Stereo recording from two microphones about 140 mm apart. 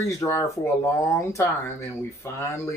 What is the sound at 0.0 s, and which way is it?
Speech, 20° left (ahead or behind).